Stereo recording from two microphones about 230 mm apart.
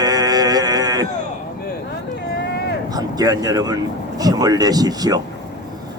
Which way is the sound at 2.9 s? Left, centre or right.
Centre.